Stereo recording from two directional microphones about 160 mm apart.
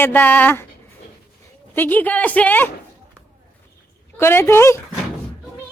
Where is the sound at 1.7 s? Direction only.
10° left (ahead or behind).